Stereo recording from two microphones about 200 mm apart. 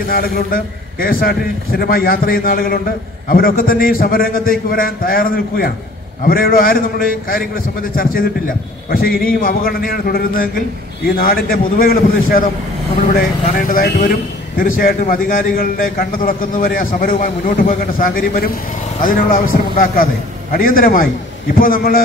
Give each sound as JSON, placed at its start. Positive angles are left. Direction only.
{"t": 0.1, "sound": "a man's voice", "side_deg": 45}